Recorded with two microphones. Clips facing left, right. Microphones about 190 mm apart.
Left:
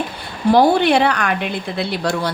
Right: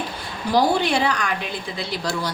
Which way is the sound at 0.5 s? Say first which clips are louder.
Left 6 dB; 60° left (ahead or behind).